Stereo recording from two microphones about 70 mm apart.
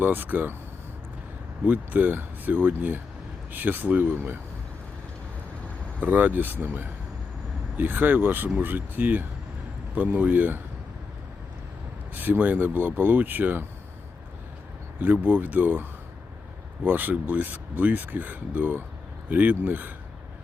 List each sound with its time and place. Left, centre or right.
0.0 s speech: right
1.6 s speech: right
6.0 s speech: right
12.1 s speech: right
14.9 s speech: right